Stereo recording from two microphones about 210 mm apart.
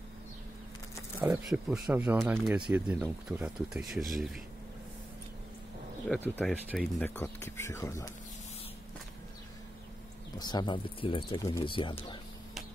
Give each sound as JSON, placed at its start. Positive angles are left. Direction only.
{"t": 1.2, "sound": "speech", "side_deg": -5}
{"t": 6.0, "sound": "speech", "side_deg": 10}
{"t": 10.4, "sound": "speech", "side_deg": 20}